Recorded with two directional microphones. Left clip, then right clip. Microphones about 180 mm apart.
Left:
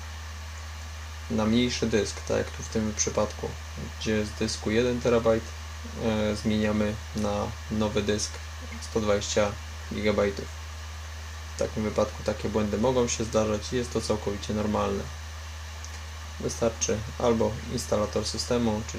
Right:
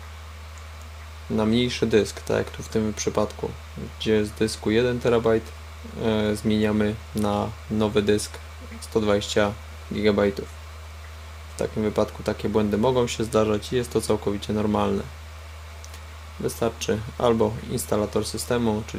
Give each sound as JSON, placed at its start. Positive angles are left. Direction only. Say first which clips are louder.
{"t": 1.4, "sound": "speech", "louder": "right 3 dB", "side_deg": -50}
{"t": 11.5, "sound": "speech", "louder": "right 3 dB", "side_deg": -50}
{"t": 16.6, "sound": "speech", "louder": "right 1 dB", "side_deg": -50}